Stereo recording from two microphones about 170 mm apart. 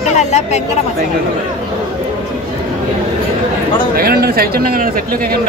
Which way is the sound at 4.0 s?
65° right (ahead or behind).